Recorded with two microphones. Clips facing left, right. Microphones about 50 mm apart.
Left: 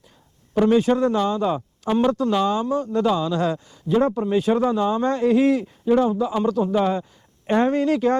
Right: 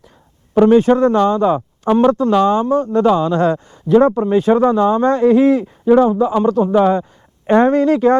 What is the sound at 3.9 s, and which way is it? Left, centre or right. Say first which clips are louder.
Speech: right 8 dB; right.